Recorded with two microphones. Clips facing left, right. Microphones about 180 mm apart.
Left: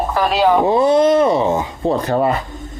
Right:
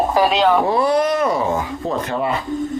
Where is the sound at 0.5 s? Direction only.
20° left (ahead or behind); by 2.3 s 35° left (ahead or behind).